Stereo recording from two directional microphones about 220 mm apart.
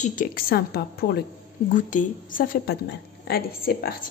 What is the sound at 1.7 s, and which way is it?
A woman's voice, 35° left (ahead or behind).